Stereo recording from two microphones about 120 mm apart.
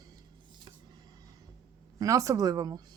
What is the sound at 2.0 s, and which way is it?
Speech, 25° right (ahead or behind).